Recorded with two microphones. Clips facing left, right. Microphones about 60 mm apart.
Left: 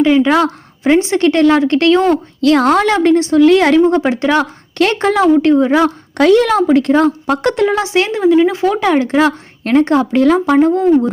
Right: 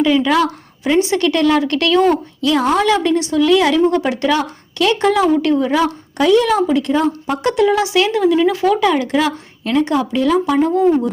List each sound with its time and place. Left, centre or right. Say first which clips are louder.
0.0 s speech: left 3 dB; left
2.4 s a woman's voice: left 5 dB; left
4.4 s speech: left 5 dB; left
5.8 s a woman's voice: left 4 dB; left